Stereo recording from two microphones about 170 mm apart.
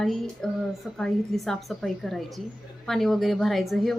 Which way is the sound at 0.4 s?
5° left (ahead or behind).